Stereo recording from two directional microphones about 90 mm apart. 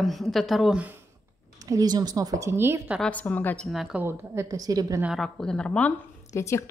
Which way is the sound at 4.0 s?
30° right (ahead or behind).